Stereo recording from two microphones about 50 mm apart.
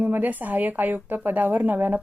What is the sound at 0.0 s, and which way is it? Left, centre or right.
Speech, right.